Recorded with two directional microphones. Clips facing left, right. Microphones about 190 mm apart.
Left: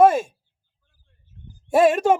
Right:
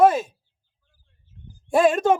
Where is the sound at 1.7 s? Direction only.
5° left (ahead or behind).